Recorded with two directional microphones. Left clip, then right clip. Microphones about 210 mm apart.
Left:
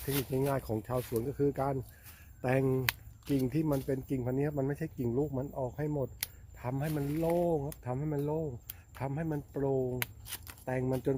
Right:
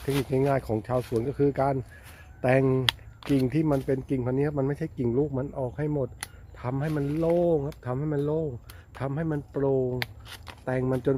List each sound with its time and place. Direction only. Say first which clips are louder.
0.3 s speech: right 8 dB; 10° right (ahead or behind)
10.2 s shuffling cards: right 3 dB; 20° left (ahead or behind)
10.7 s speech: right 6 dB; 5° right (ahead or behind)